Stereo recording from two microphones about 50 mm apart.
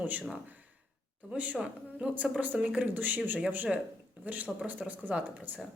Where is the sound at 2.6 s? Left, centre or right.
Centre.